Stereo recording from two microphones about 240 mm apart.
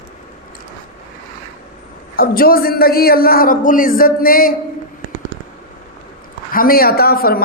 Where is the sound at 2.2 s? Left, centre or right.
Left.